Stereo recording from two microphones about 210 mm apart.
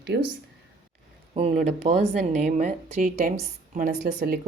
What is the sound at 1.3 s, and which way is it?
A woman's voice, 30° right (ahead or behind).